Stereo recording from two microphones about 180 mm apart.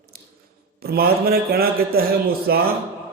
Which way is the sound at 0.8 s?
60° right (ahead or behind).